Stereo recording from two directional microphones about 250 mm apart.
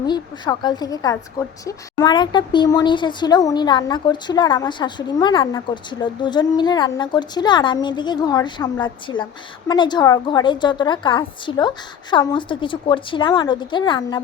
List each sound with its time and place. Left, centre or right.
0.0 s a woman's voice: centre